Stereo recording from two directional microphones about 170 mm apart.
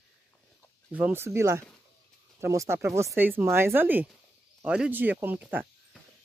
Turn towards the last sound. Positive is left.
turn(degrees=-10)  # may be behind; listen again after turning